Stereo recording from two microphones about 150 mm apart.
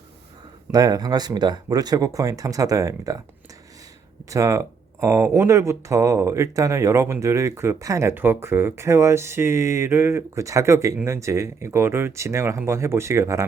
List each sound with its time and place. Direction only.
0.7 s speech: 25° right (ahead or behind)
4.3 s speech: 20° right (ahead or behind)